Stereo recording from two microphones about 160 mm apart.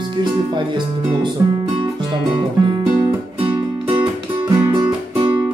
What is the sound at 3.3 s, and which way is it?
Music, 35° right (ahead or behind).